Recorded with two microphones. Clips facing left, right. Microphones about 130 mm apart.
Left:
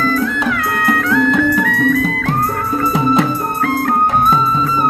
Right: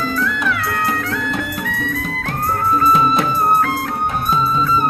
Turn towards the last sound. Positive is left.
turn(degrees=90)